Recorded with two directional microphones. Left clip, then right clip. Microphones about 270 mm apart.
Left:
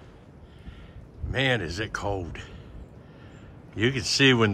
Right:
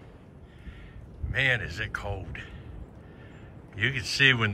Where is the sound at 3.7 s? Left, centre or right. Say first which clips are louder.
Left 2 dB; centre.